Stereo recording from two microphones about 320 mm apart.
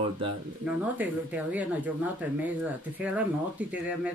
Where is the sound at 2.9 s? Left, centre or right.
Centre.